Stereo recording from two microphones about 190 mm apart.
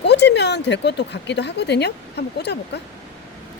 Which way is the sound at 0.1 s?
65° left (ahead or behind).